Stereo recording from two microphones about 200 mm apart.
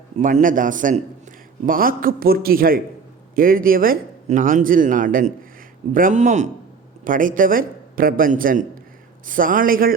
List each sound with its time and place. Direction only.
0.2 s a man's voice: 40° right (ahead or behind)